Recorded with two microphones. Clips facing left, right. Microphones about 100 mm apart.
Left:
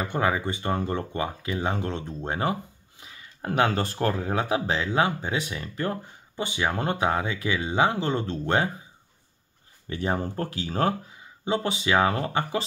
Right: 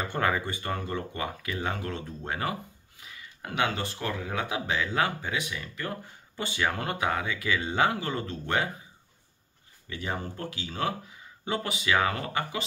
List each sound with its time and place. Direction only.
0.0 s speech: 15° left (ahead or behind); by 5.9 s 35° left (ahead or behind)
6.3 s speech: 20° left (ahead or behind)
9.8 s speech: 35° left (ahead or behind)
11.4 s speech: 25° left (ahead or behind)